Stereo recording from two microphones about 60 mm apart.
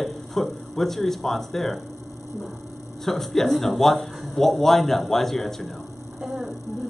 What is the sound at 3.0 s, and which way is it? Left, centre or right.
Speech, centre.